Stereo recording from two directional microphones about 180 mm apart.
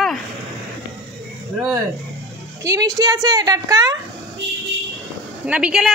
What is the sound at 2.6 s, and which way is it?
A woman's voice, 20° right (ahead or behind).